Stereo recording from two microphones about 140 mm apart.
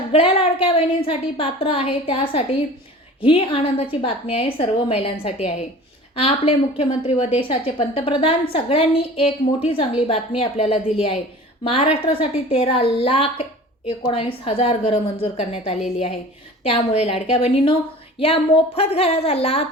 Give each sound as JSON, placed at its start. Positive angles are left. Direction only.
{"t": 0.1, "sound": "speech", "side_deg": 40}
{"t": 6.1, "sound": "speech", "side_deg": 45}